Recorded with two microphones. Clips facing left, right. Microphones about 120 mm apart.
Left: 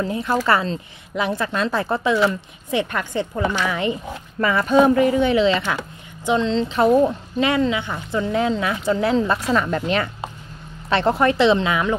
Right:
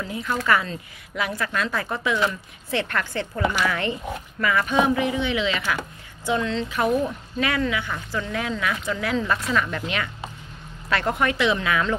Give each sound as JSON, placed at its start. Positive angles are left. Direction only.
{"t": 0.0, "sound": "speech", "side_deg": 35}
{"t": 2.7, "sound": "speech", "side_deg": 15}
{"t": 4.4, "sound": "speech", "side_deg": 30}
{"t": 6.2, "sound": "speech", "side_deg": 25}